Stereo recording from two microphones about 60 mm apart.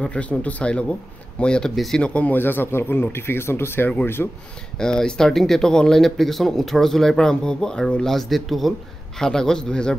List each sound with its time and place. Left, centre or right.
0.0 s speech: left
2.3 s speech: left
4.7 s speech: centre